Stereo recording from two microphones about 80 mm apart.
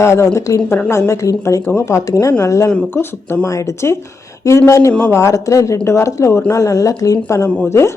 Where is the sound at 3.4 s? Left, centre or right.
Left.